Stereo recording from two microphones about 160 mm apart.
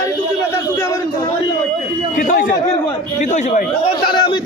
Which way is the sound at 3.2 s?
50° left (ahead or behind).